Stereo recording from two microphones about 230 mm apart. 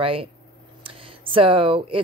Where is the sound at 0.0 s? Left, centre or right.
Right.